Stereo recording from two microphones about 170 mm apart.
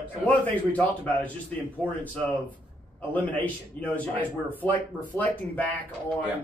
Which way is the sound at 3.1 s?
10° left (ahead or behind).